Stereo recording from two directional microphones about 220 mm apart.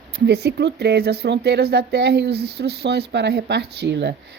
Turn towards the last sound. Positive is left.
turn(degrees=-50)  # may be behind; listen again after turning